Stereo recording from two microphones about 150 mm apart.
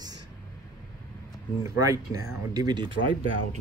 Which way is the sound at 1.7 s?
20° right (ahead or behind).